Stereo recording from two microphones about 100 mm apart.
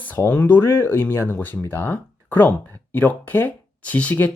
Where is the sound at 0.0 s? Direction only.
15° left (ahead or behind).